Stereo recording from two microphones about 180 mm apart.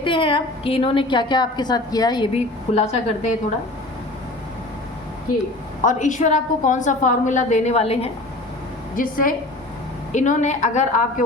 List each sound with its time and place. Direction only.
0.0 s a woman's voice: 30° left (ahead or behind)
5.8 s a woman's voice: 45° left (ahead or behind)
9.0 s a woman's voice: 50° left (ahead or behind)